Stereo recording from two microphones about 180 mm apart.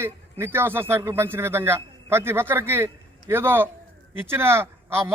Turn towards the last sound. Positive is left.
turn(degrees=-15)  # may be behind; listen again after turning